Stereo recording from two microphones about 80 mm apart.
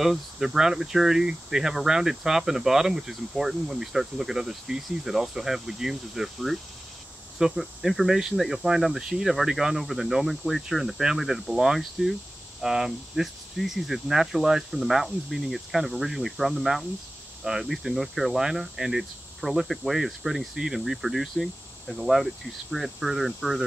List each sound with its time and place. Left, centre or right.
0.0 s speech: centre